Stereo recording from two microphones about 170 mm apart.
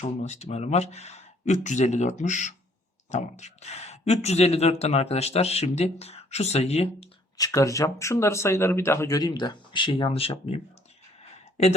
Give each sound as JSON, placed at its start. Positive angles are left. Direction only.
{"t": 0.2, "sound": "speech", "side_deg": 40}
{"t": 7.3, "sound": "speech", "side_deg": 20}